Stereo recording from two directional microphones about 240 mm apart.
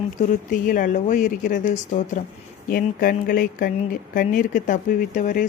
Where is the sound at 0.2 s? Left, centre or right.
Left.